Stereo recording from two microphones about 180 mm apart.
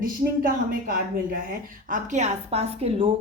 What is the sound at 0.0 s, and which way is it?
Speech, 50° right (ahead or behind).